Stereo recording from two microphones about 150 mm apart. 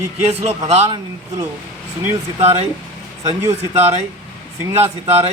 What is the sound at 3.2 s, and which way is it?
Speech, 20° right (ahead or behind).